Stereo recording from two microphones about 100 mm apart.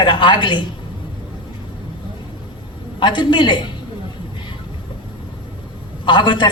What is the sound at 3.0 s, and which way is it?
Speech, 50° left (ahead or behind).